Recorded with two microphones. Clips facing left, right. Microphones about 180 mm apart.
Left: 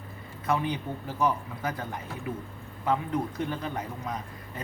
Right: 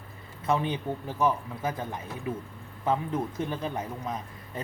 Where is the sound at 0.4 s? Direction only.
25° right (ahead or behind).